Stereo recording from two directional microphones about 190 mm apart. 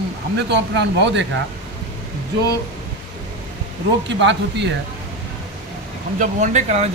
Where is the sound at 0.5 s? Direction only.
65° right (ahead or behind).